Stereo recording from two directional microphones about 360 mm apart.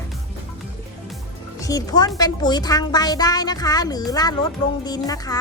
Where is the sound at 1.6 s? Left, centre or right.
Centre.